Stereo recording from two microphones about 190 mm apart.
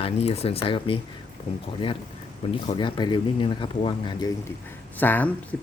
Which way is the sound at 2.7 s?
25° left (ahead or behind).